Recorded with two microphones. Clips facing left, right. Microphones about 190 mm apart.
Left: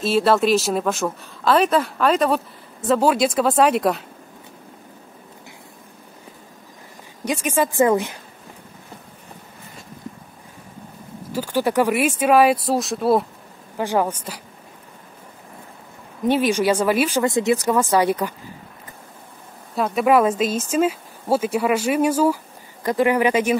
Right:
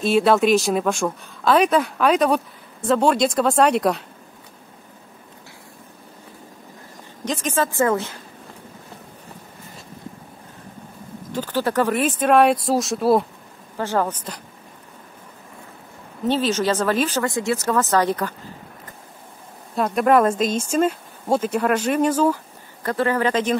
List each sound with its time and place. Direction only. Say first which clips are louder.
0.0 s speech: right 1 dB; centre (ahead or behind)
7.2 s speech: left 2 dB; 10° left (ahead or behind)
11.3 s speech: left 2 dB; 10° left (ahead or behind)
13.7 s speech: left 1 dB; 15° left (ahead or behind)
16.2 s speech: left 2 dB; 15° left (ahead or behind)
19.7 s speech: even; centre (ahead or behind)